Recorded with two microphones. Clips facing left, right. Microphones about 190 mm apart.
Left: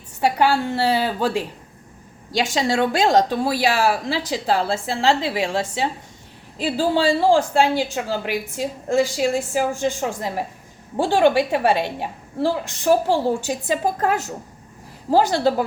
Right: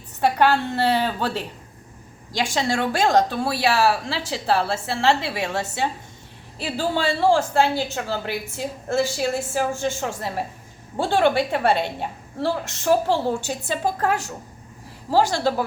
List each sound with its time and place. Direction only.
0.2 s a woman's voice: 10° left (ahead or behind)
2.6 s a woman's voice: 15° left (ahead or behind)
15.1 s a woman's voice: 15° left (ahead or behind)